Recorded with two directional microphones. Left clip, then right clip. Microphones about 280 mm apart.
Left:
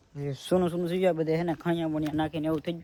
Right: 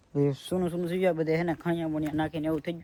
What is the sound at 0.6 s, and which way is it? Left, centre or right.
Speech, centre.